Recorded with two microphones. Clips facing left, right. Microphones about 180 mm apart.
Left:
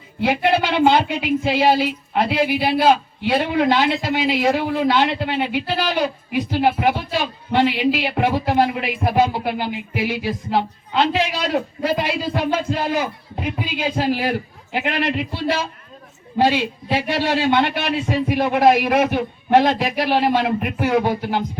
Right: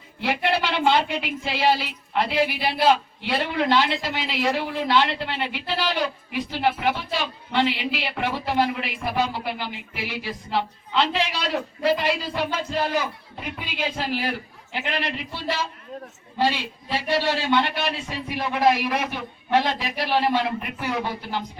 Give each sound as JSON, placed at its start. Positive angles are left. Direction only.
{"t": 0.2, "sound": "speech", "side_deg": 50}